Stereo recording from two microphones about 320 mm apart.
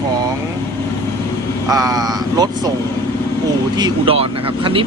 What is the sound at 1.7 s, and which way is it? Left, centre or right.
Speech, centre.